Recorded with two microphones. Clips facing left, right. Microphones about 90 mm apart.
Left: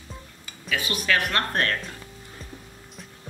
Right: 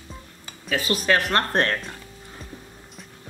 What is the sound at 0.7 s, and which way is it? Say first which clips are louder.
Speech: right 4 dB; 35° right (ahead or behind).